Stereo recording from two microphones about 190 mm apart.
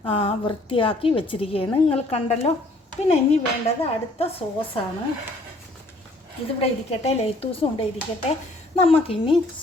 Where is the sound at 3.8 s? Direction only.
30° left (ahead or behind).